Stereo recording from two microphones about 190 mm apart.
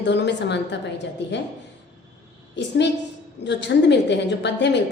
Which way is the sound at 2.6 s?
65° left (ahead or behind).